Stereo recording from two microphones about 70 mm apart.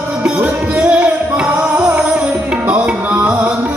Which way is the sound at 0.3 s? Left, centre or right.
Centre.